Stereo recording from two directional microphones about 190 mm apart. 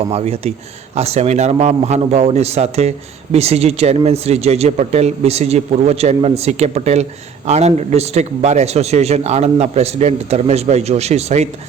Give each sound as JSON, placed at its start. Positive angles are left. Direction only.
{"t": 0.1, "sound": "a man's voice", "side_deg": -35}